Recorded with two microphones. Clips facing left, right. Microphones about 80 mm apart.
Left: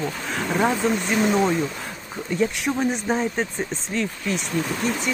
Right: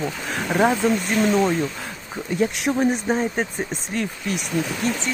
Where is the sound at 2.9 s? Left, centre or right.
Centre.